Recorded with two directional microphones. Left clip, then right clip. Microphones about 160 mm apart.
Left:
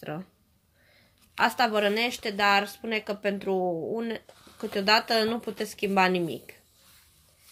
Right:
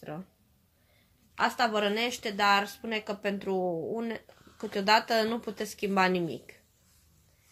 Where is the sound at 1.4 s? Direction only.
35° left (ahead or behind); by 6.6 s 15° left (ahead or behind).